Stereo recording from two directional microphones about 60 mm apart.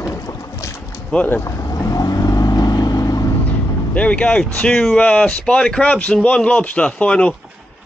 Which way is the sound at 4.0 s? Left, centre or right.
Left.